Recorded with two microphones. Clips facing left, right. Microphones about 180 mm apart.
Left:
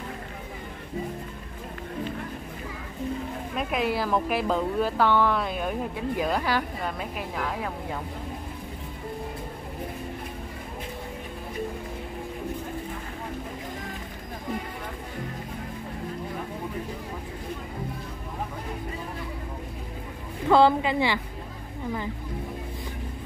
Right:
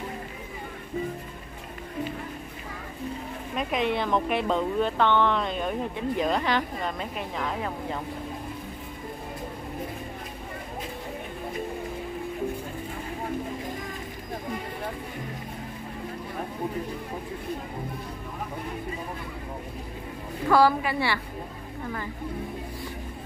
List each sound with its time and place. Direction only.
3.5 s speech: 5° left (ahead or behind)
20.4 s a woman's voice: 20° left (ahead or behind)